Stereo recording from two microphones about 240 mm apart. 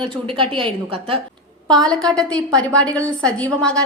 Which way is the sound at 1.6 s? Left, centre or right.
Centre.